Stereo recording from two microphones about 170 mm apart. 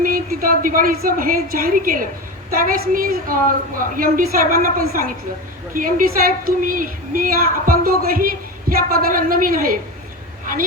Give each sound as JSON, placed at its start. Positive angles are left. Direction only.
{"t": 0.0, "sound": "a woman's voice", "side_deg": -55}